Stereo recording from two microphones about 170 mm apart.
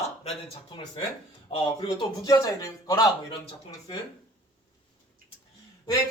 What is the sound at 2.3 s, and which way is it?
Speech, 20° left (ahead or behind).